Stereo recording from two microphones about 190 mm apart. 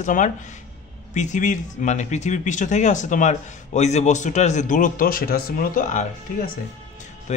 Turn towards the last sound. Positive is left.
turn(degrees=40)  # may be behind; listen again after turning